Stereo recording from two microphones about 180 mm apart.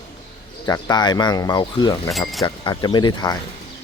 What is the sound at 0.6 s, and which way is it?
Speech, 20° left (ahead or behind).